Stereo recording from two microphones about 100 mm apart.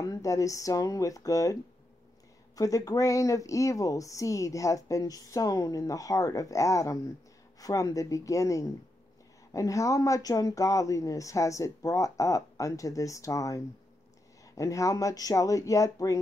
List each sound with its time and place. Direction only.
0.0 s speech: 35° left (ahead or behind)